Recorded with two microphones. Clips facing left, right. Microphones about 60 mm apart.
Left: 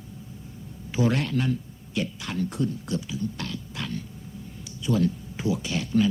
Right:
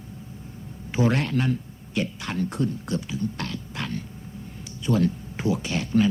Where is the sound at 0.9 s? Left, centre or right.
Right.